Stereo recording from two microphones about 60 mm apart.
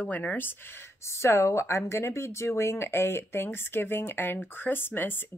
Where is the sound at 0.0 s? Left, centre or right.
Left.